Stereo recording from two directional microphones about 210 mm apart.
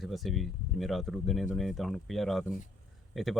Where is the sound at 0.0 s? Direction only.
Centre (ahead or behind).